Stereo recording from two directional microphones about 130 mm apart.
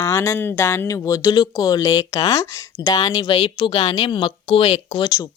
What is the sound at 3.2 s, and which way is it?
Speech, 45° left (ahead or behind).